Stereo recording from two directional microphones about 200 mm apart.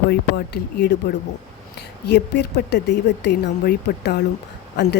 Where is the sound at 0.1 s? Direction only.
55° left (ahead or behind).